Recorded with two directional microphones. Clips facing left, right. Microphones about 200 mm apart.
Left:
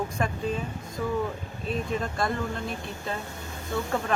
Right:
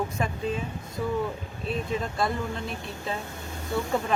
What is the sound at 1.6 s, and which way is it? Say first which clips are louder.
Speech: even; centre (ahead or behind).